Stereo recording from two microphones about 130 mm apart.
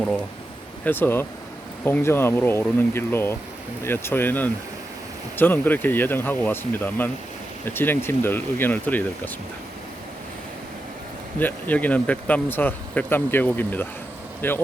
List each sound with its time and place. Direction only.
0.9 s speech: 15° left (ahead or behind)
11.3 s speech: 15° left (ahead or behind)